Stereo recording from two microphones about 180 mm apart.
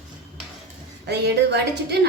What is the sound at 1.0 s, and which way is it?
Speech, 70° right (ahead or behind).